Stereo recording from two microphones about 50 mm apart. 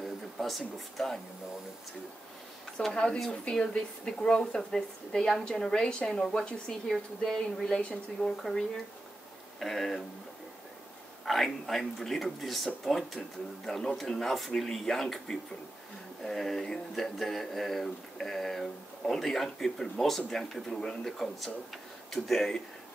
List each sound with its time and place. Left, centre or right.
0.0 s speech: centre
2.9 s a woman's voice: centre
11.2 s a woman's voice: centre